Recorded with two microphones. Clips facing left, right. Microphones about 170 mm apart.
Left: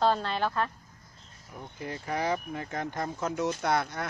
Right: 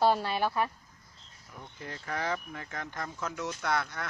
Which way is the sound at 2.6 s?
30° left (ahead or behind).